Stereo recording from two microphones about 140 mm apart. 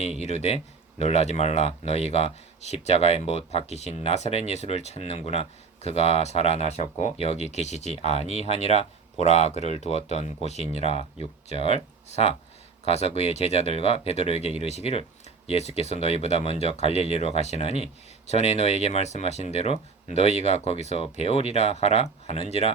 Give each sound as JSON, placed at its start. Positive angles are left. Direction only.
{"t": 0.0, "sound": "speech", "side_deg": 50}